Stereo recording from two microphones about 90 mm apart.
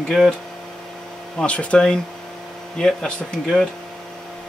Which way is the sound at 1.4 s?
15° left (ahead or behind).